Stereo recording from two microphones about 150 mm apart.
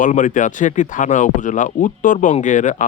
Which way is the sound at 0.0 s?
60° left (ahead or behind).